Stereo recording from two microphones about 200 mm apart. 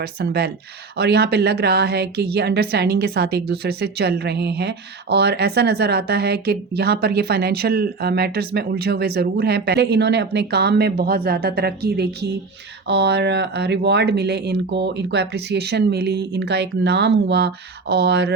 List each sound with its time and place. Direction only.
0.0 s a woman's voice: 50° right (ahead or behind)